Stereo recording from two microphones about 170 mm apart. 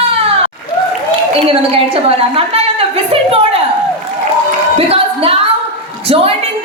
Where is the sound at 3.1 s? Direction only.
30° right (ahead or behind).